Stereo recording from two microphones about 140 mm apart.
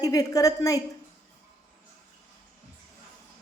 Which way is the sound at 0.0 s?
25° left (ahead or behind).